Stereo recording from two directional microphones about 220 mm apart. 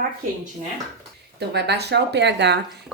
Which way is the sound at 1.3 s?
50° right (ahead or behind).